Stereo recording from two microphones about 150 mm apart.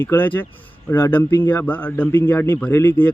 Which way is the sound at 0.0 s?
15° left (ahead or behind).